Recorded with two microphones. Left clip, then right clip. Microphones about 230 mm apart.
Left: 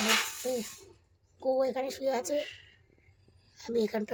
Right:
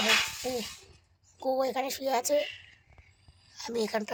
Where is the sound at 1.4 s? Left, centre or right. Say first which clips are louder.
Even; right.